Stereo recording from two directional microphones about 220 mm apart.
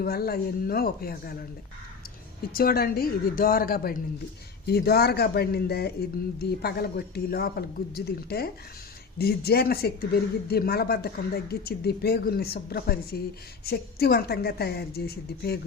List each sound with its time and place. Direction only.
0.0 s speech: 45° left (ahead or behind)
2.5 s speech: 40° left (ahead or behind)